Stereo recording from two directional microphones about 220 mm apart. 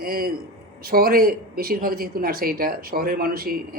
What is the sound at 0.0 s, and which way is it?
A man's voice, 45° right (ahead or behind).